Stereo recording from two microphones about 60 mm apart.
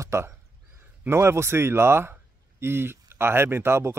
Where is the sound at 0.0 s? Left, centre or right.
Right.